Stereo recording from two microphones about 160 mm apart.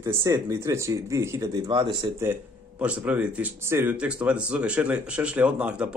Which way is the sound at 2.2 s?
10° right (ahead or behind).